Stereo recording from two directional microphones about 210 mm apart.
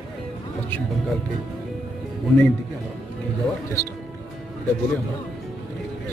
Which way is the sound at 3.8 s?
15° left (ahead or behind).